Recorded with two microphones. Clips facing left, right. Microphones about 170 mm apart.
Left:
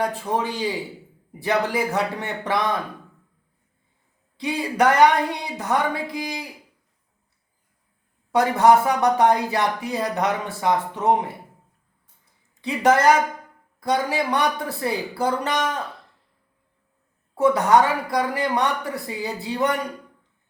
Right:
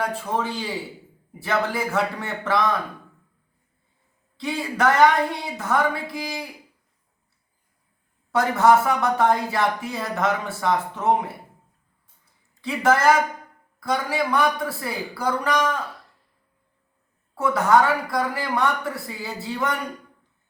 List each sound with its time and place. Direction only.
0.0 s speech: 15° left (ahead or behind)
4.4 s speech: 15° left (ahead or behind)
8.4 s speech: 15° left (ahead or behind)
12.6 s speech: 20° left (ahead or behind)
17.3 s speech: 20° left (ahead or behind)